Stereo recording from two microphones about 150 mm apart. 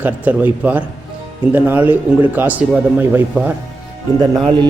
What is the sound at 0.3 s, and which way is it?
A man's voice, 10° right (ahead or behind).